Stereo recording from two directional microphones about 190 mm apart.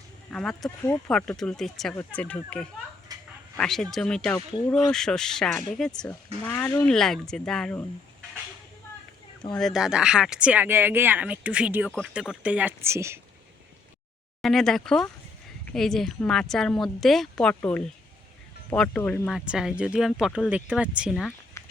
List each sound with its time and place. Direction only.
0.3 s speech: 5° left (ahead or behind)
3.1 s dog: 20° right (ahead or behind)
3.6 s speech: centre (ahead or behind)
4.4 s speech: 20° left (ahead or behind)
4.7 s speech: 5° left (ahead or behind)
9.5 s speech: centre (ahead or behind); by 13.1 s 15° right (ahead or behind)
14.4 s speech: centre (ahead or behind)
19.5 s speech: 5° right (ahead or behind)